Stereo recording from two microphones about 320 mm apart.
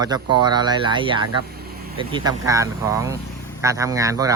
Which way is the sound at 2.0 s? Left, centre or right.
Centre.